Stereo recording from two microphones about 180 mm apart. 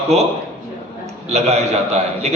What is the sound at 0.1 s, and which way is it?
Speech, 35° right (ahead or behind).